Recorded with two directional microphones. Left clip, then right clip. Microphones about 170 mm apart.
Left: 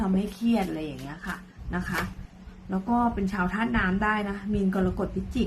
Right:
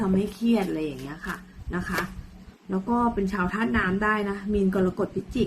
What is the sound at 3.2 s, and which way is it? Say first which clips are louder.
A woman's voice: right 1 dB; 15° left (ahead or behind).